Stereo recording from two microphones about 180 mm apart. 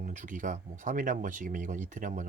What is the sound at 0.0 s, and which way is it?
Speech, 45° right (ahead or behind).